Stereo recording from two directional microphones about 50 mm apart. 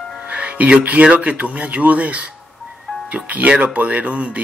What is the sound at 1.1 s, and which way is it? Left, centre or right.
Speech, right.